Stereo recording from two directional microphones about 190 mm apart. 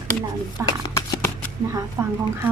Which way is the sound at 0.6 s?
20° left (ahead or behind).